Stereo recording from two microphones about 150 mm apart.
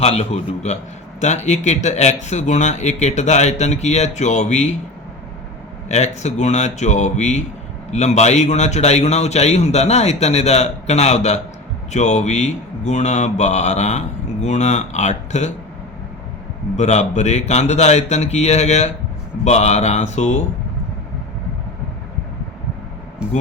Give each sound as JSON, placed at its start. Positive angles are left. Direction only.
{"t": 0.0, "sound": "a man's voice", "side_deg": 45}
{"t": 5.9, "sound": "a man's voice", "side_deg": 50}
{"t": 16.7, "sound": "a man's voice", "side_deg": 50}
{"t": 23.2, "sound": "speech", "side_deg": -5}